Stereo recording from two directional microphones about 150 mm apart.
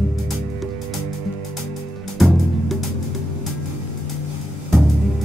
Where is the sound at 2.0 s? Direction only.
Centre (ahead or behind).